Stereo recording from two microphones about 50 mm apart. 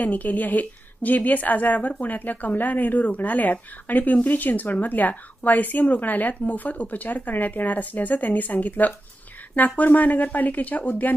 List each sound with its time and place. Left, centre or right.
0.0 s a woman's voice: left